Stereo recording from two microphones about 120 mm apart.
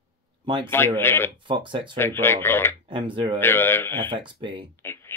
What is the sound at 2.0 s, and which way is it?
Speech, 20° left (ahead or behind).